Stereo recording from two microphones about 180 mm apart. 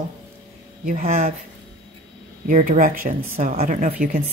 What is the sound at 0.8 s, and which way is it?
Speech, 45° right (ahead or behind).